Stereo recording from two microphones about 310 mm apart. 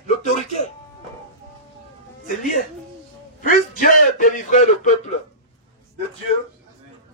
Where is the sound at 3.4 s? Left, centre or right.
Left.